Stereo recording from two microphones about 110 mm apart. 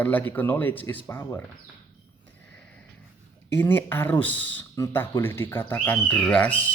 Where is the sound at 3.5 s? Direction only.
20° left (ahead or behind).